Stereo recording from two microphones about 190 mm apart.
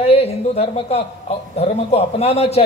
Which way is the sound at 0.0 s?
30° left (ahead or behind).